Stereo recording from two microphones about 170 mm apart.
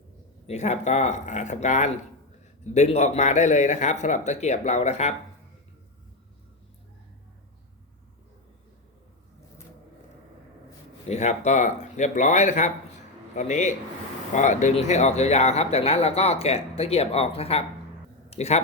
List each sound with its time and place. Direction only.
0.4 s a man's voice: 40° left (ahead or behind)
11.1 s a man's voice: 40° left (ahead or behind)